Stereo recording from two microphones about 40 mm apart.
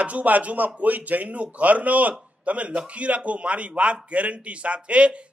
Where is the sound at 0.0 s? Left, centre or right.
Right.